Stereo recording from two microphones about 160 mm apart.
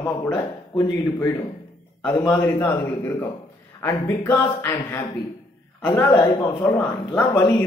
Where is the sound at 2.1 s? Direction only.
15° left (ahead or behind).